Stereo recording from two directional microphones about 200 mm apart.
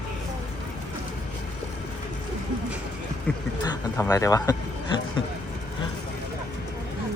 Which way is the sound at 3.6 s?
15° left (ahead or behind).